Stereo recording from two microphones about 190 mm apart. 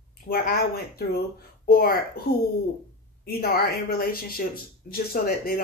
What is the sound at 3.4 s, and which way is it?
Speech, 55° left (ahead or behind).